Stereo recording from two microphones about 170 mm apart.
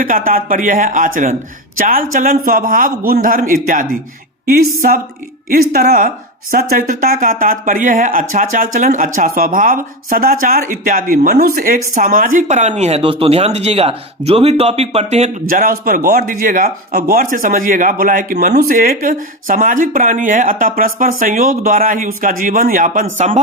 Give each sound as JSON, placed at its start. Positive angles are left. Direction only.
{"t": 0.0, "sound": "a man's voice", "side_deg": -55}
{"t": 4.4, "sound": "a man's voice", "side_deg": -60}
{"t": 15.4, "sound": "speech", "side_deg": -55}